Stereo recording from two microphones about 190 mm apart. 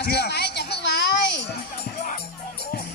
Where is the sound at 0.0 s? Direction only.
60° left (ahead or behind).